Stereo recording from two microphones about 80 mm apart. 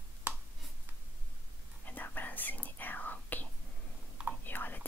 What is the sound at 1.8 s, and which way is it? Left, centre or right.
Whispering, left.